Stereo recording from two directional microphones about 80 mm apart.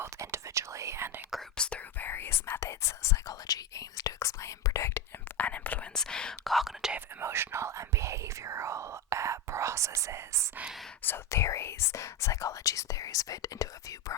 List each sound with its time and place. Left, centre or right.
0.0 s whispering: right
1.5 s whispering: centre
2.0 s whispering: left
3.4 s whispering: left
5.4 s whispering: centre
5.9 s whispering: centre
7.2 s whispering: right
11.0 s whispering: left